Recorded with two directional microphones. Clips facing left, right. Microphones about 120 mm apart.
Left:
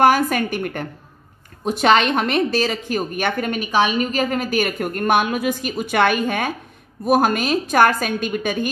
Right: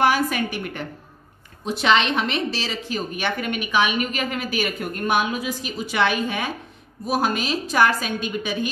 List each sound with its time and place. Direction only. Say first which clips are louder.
0.0 s a woman's voice: left 4 dB; 45° left (ahead or behind)